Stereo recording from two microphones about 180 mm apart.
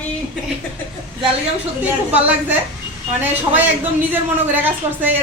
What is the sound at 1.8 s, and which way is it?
Speech, 10° right (ahead or behind).